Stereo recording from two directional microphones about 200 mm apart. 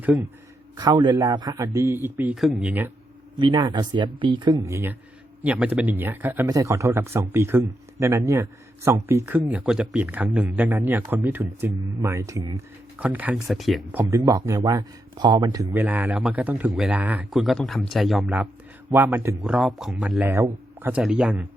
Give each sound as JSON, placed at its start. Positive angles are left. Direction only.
{"t": 0.0, "sound": "a man's voice", "side_deg": -10}
{"t": 0.8, "sound": "speech", "side_deg": -20}
{"t": 3.3, "sound": "speech", "side_deg": -25}